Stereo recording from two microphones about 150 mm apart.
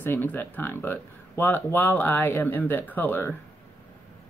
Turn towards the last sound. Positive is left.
turn(degrees=15)  # may be behind; listen again after turning